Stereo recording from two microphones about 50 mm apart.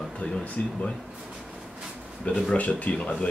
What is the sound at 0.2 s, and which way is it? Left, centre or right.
Speech, left.